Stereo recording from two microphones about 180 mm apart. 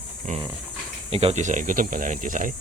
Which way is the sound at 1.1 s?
35° right (ahead or behind).